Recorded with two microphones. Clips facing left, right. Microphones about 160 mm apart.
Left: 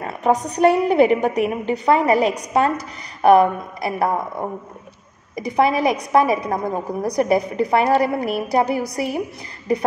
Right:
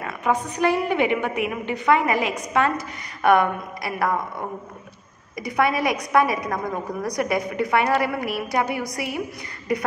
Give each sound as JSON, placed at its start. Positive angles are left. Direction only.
{"t": 0.0, "sound": "a woman's voice", "side_deg": 35}
{"t": 5.6, "sound": "a woman's voice", "side_deg": 30}